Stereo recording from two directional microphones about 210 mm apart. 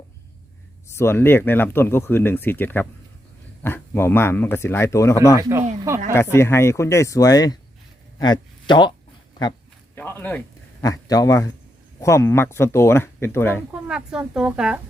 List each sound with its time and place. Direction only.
0.9 s speech: 10° left (ahead or behind)
5.4 s speech: 15° right (ahead or behind)
6.3 s speech: 10° left (ahead or behind)
9.9 s a man's voice: 10° left (ahead or behind)
13.7 s speech: 5° right (ahead or behind)